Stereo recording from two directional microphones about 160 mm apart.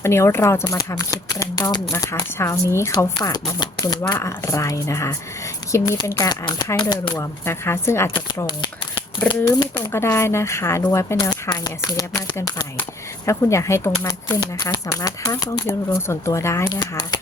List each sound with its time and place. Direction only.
0.0 s speech: 15° left (ahead or behind)
8.4 s speech: 30° left (ahead or behind)